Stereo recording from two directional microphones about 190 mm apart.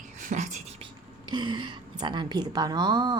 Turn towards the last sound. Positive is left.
turn(degrees=-20)  # may be behind; listen again after turning